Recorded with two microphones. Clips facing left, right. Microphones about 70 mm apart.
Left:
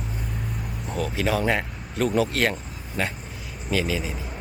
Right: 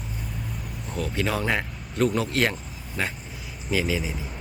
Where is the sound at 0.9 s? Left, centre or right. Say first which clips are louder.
Left 2 dB; centre.